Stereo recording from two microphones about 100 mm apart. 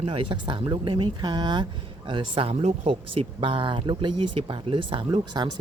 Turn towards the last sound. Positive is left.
turn(degrees=-45)  # may be behind; listen again after turning